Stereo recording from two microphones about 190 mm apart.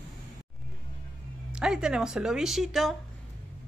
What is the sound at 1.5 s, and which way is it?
A woman's voice, 5° right (ahead or behind).